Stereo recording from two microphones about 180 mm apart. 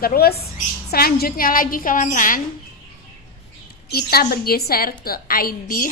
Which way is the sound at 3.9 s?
60° left (ahead or behind).